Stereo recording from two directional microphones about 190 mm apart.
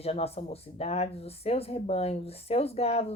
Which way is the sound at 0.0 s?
30° left (ahead or behind).